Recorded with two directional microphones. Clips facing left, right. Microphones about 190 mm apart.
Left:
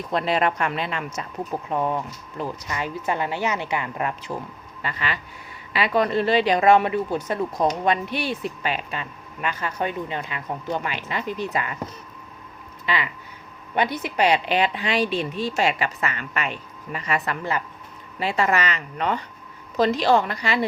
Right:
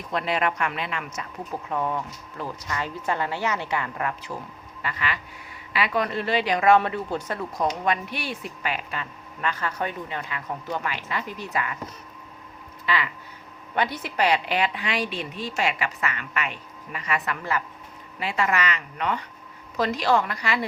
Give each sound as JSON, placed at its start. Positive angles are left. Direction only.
{"t": 0.1, "sound": "speech", "side_deg": 30}
{"t": 1.7, "sound": "a woman's voice", "side_deg": 20}
{"t": 12.8, "sound": "a sound", "side_deg": 20}
{"t": 13.7, "sound": "speech", "side_deg": 20}